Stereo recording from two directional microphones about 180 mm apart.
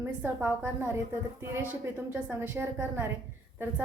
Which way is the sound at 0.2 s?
10° right (ahead or behind).